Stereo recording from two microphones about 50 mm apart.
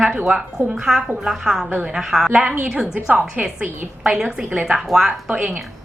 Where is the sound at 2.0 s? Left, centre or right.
Centre.